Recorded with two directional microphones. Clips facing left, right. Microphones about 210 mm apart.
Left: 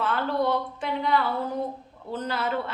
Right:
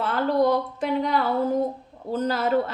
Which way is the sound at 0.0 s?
40° right (ahead or behind).